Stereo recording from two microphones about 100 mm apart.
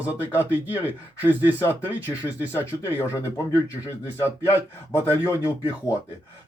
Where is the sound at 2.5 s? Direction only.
20° left (ahead or behind).